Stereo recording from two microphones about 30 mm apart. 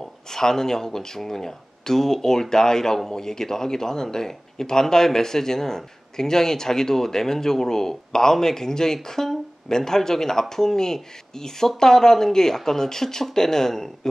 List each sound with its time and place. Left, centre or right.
0.0 s speech: centre